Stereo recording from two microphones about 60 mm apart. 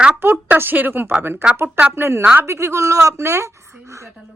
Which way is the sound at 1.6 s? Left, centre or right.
Right.